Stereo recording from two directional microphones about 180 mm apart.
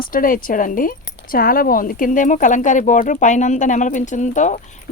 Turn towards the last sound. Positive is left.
turn(degrees=45)  # may be behind; listen again after turning